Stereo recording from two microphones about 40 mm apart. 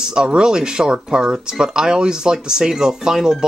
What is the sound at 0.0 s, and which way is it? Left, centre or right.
Speech, centre.